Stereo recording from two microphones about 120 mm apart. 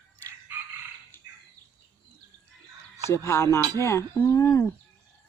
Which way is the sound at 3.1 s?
20° left (ahead or behind).